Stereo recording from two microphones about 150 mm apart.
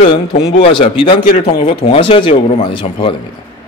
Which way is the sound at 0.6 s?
35° left (ahead or behind).